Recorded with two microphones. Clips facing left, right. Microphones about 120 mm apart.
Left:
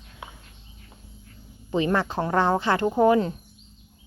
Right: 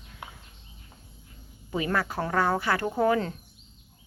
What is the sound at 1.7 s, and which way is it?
Speech, 25° left (ahead or behind).